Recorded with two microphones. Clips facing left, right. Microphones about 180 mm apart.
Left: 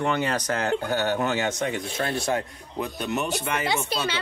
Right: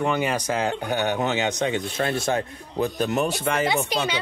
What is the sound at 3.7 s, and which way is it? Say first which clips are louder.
Speech: right 3 dB; 15° right (ahead or behind).